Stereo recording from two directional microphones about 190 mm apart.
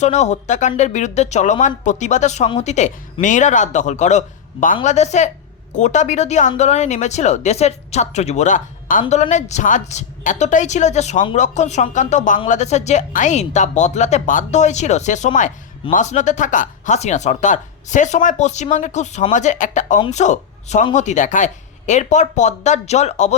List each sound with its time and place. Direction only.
0.0 s a woman's voice: 35° left (ahead or behind)